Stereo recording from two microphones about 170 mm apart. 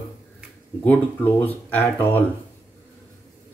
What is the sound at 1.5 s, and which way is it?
Speech, 10° left (ahead or behind).